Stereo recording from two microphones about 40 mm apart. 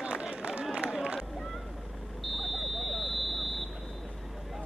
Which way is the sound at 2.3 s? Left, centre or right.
Centre.